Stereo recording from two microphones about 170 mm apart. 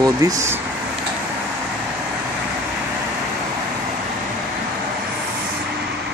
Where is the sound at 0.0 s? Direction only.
20° right (ahead or behind).